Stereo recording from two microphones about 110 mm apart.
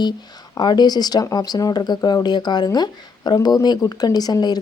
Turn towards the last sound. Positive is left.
turn(degrees=40)  # may be behind; listen again after turning